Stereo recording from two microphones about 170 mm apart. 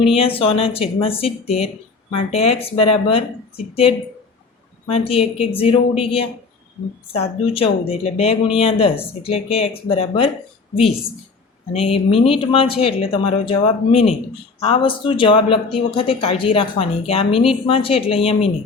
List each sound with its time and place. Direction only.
0.2 s speech: 35° left (ahead or behind)
4.9 s speech: 35° left (ahead or behind)
11.7 s speech: 35° left (ahead or behind)